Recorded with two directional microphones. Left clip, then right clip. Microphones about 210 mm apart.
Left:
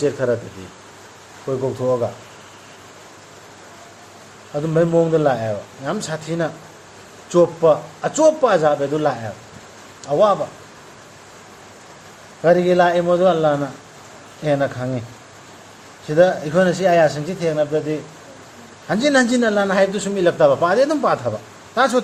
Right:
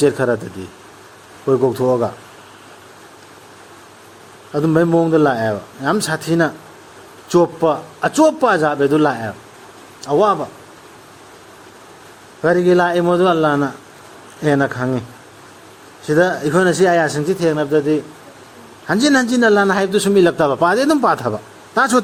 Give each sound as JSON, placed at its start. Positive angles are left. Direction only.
{"t": 0.0, "sound": "a man's voice", "side_deg": -55}
{"t": 1.5, "sound": "a man's voice", "side_deg": -55}
{"t": 4.5, "sound": "a man's voice", "side_deg": -55}
{"t": 12.4, "sound": "a man's voice", "side_deg": -50}
{"t": 16.1, "sound": "a man's voice", "side_deg": -45}
{"t": 18.9, "sound": "a man's voice", "side_deg": -50}